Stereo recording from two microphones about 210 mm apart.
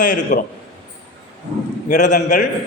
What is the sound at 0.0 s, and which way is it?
Speech, 40° left (ahead or behind).